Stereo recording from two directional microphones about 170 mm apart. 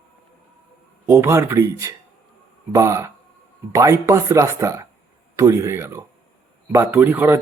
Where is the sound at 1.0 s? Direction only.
15° right (ahead or behind).